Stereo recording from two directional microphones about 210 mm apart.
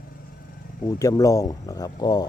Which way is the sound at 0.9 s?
15° left (ahead or behind).